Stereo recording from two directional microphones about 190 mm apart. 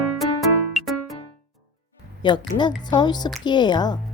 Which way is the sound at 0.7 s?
Centre (ahead or behind).